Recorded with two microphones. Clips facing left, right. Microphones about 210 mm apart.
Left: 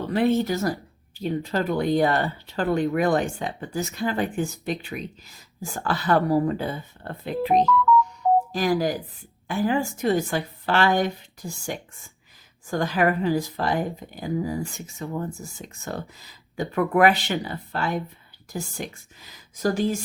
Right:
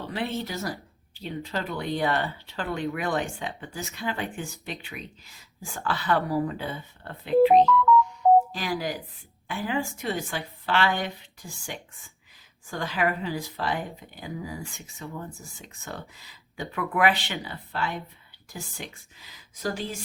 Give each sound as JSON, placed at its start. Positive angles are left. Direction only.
{"t": 0.1, "sound": "speech", "side_deg": 45}
{"t": 8.5, "sound": "speech", "side_deg": 45}